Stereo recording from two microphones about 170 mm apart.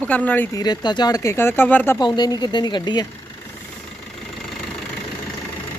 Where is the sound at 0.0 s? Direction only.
10° left (ahead or behind).